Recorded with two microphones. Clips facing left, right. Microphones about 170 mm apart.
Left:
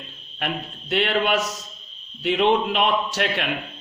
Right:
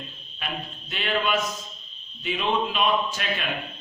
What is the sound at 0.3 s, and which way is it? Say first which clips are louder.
A man's voice: left 5 dB; 65° left (ahead or behind).